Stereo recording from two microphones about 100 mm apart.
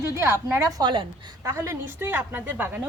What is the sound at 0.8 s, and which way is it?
Speech, 50° right (ahead or behind).